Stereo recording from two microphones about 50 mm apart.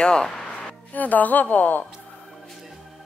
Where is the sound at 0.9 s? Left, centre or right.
Left.